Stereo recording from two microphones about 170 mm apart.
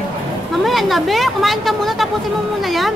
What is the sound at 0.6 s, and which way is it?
A woman's voice, centre (ahead or behind).